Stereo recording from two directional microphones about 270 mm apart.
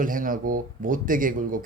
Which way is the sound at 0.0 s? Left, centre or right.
Right.